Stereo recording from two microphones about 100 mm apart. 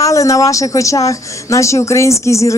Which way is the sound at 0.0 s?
35° left (ahead or behind).